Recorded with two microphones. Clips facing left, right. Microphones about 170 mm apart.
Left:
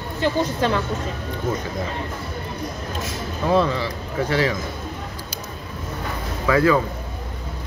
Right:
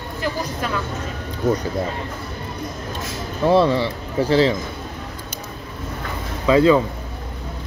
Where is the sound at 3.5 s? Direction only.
25° right (ahead or behind).